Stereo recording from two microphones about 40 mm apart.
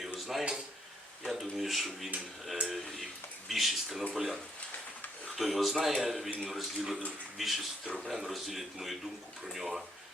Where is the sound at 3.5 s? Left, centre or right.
Centre.